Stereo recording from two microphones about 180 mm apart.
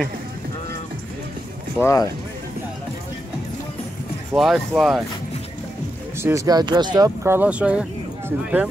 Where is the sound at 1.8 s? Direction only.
15° left (ahead or behind).